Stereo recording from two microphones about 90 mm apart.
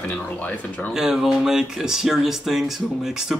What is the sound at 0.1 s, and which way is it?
Speech, 20° left (ahead or behind).